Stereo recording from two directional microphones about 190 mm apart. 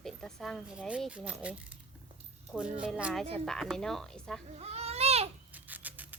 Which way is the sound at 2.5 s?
5° right (ahead or behind).